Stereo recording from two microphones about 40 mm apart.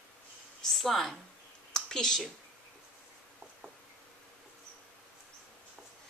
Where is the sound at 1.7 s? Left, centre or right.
Centre.